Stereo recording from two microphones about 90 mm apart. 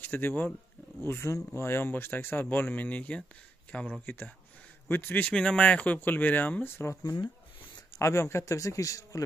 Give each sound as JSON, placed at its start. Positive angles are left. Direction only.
{"t": 0.0, "sound": "speech", "side_deg": 20}
{"t": 7.0, "sound": "speech", "side_deg": 45}
{"t": 8.0, "sound": "a man's voice", "side_deg": 30}